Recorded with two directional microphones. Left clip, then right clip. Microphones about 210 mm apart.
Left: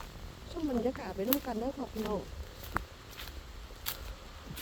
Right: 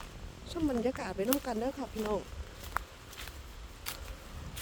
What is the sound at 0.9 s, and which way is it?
Speech, 15° right (ahead or behind).